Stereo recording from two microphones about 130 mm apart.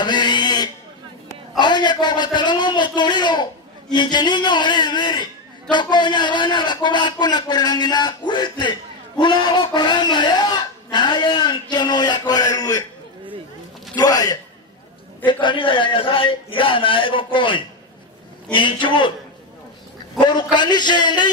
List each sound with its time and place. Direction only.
0.0 s a sound: 35° left (ahead or behind)
1.6 s a man's voice: 35° left (ahead or behind)
9.2 s a sound: 35° left (ahead or behind)
13.9 s speech: 30° left (ahead or behind)
15.4 s a man's voice: 40° left (ahead or behind)
20.2 s a man's voice: 35° left (ahead or behind)